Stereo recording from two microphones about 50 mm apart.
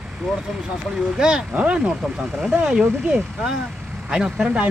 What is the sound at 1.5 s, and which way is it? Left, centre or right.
Speech, right.